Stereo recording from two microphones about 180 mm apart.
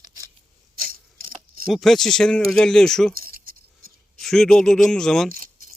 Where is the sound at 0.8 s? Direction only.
55° right (ahead or behind).